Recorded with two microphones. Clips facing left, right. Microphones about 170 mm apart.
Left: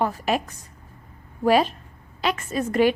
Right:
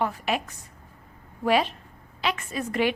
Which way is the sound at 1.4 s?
40° left (ahead or behind).